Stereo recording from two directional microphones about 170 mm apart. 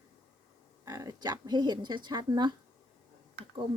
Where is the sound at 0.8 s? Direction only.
20° right (ahead or behind).